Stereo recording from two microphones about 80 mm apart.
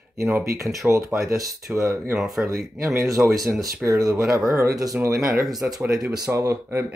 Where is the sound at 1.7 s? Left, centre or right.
Centre.